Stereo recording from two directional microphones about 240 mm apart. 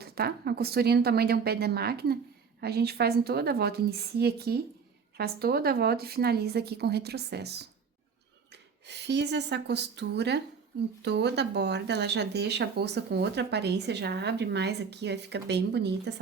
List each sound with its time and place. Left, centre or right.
0.0 s a woman's voice: right
8.9 s speech: right